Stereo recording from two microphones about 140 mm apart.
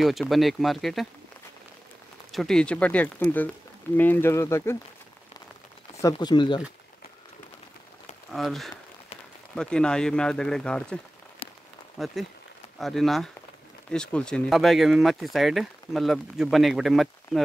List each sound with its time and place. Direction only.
0.0 s speech: centre (ahead or behind)
2.3 s speech: 5° left (ahead or behind); by 4.7 s 20° left (ahead or behind)
5.9 s speech: 25° left (ahead or behind)
8.3 s speech: centre (ahead or behind)
12.0 s speech: centre (ahead or behind)